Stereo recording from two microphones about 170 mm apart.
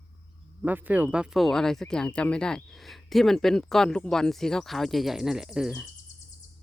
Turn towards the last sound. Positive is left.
turn(degrees=-5)  # may be behind; listen again after turning